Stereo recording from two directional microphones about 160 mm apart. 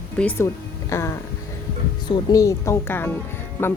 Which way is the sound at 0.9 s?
20° left (ahead or behind).